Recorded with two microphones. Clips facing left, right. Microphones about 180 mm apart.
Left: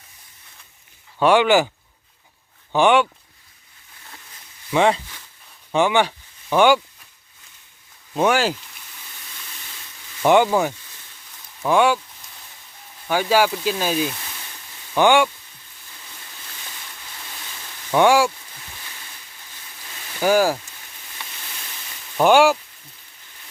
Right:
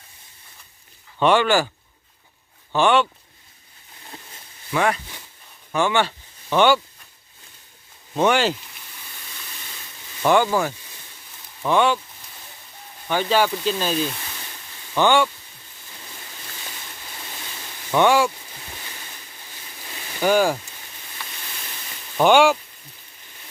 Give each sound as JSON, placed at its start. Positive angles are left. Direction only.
{"t": 1.2, "sound": "speech", "side_deg": 10}
{"t": 2.7, "sound": "speech", "side_deg": 15}
{"t": 4.7, "sound": "speech", "side_deg": 20}
{"t": 8.1, "sound": "speech", "side_deg": 5}
{"t": 10.2, "sound": "speech", "side_deg": 20}
{"t": 13.1, "sound": "speech", "side_deg": 10}
{"t": 17.9, "sound": "speech", "side_deg": 10}
{"t": 20.1, "sound": "speech", "side_deg": 5}
{"t": 22.2, "sound": "speech", "side_deg": 5}